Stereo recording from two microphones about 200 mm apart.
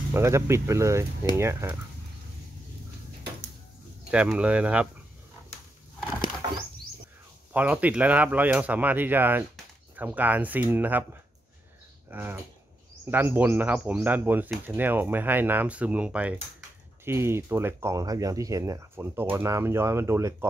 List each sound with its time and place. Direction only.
0.1 s speech: 15° right (ahead or behind)
4.1 s speech: 5° right (ahead or behind)
7.5 s speech: 5° right (ahead or behind)
12.1 s speech: 10° right (ahead or behind)